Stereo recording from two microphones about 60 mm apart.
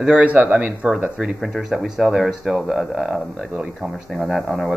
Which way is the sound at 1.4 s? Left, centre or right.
Centre.